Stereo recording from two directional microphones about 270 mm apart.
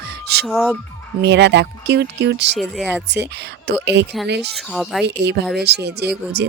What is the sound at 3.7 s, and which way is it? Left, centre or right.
Speech, right.